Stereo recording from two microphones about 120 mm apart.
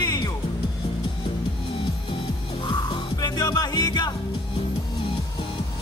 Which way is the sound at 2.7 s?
35° left (ahead or behind).